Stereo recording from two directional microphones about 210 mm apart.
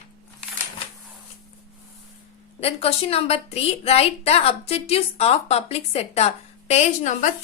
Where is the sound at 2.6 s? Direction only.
30° left (ahead or behind).